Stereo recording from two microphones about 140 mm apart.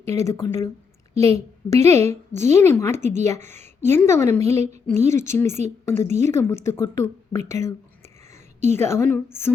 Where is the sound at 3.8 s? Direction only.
20° left (ahead or behind).